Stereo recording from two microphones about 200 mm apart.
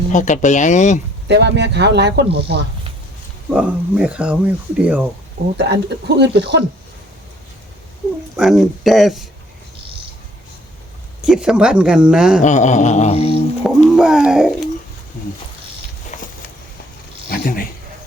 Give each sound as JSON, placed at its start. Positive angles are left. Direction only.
{"t": 0.1, "sound": "speech", "side_deg": 40}
{"t": 1.3, "sound": "speech", "side_deg": -60}
{"t": 3.5, "sound": "speech", "side_deg": -5}
{"t": 5.5, "sound": "speech", "side_deg": -60}
{"t": 8.4, "sound": "speech", "side_deg": 0}
{"t": 11.2, "sound": "speech", "side_deg": -5}
{"t": 12.4, "sound": "speech", "side_deg": 35}
{"t": 13.7, "sound": "speech", "side_deg": 0}
{"t": 16.1, "sound": "a sound", "side_deg": 35}
{"t": 17.2, "sound": "a sound", "side_deg": 45}